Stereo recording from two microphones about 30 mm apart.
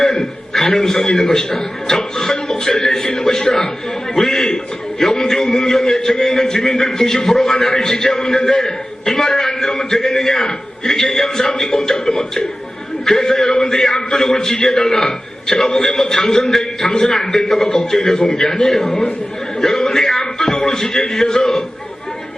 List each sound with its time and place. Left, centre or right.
0.2 s a man's voice: centre